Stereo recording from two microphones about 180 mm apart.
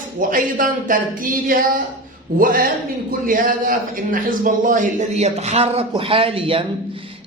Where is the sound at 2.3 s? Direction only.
55° right (ahead or behind).